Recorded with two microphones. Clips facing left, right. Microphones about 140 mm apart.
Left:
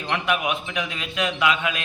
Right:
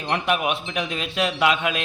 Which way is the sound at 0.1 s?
35° right (ahead or behind).